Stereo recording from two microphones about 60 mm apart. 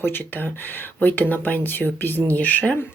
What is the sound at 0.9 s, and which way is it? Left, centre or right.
Speech, left.